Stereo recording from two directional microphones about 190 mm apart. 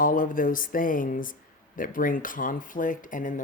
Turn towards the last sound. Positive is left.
turn(degrees=45)  # may be behind; listen again after turning